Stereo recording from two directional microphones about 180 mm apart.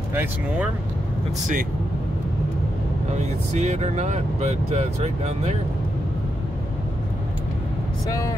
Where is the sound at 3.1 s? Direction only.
40° right (ahead or behind).